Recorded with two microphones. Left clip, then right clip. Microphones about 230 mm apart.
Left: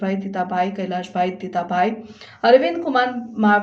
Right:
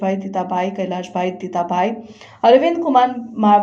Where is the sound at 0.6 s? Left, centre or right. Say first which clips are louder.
Right 2 dB; centre.